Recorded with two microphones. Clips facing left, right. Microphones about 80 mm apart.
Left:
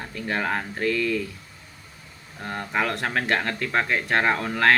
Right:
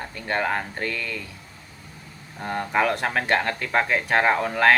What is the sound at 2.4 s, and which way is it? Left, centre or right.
Speech, centre.